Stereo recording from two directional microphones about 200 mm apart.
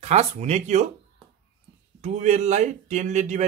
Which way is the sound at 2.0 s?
35° right (ahead or behind).